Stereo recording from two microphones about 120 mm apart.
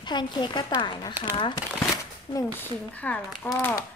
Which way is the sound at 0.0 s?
40° left (ahead or behind).